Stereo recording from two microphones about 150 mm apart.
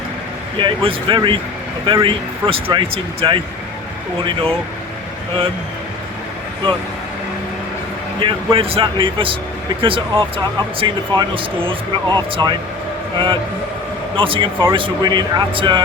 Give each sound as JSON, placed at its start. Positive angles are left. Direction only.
{"t": 0.6, "sound": "speech", "side_deg": -35}
{"t": 8.2, "sound": "speech", "side_deg": -35}